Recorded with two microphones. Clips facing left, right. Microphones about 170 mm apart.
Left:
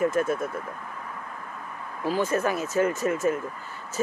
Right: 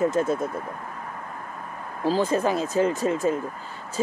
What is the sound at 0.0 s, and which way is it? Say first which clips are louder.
Speech: right 1 dB; 20° right (ahead or behind).